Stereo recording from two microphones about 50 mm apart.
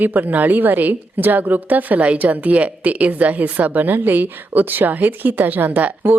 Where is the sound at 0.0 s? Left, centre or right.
Right.